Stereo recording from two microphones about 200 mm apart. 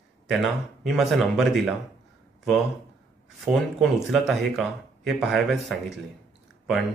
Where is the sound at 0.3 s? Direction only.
Centre (ahead or behind).